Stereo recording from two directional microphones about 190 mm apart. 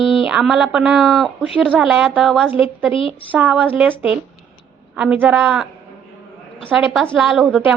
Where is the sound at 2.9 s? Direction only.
30° left (ahead or behind).